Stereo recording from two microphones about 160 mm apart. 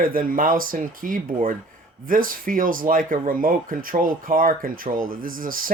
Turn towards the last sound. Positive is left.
turn(degrees=-60)  # may be behind; listen again after turning